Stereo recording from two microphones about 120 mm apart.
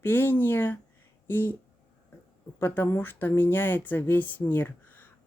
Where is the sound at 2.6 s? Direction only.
20° left (ahead or behind).